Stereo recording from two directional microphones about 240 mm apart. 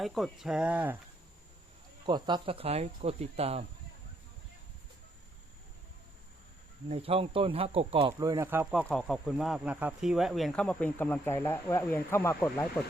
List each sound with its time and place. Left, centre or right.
0.0 s speech: centre
2.0 s speech: centre
6.8 s speech: right; by 12.8 s centre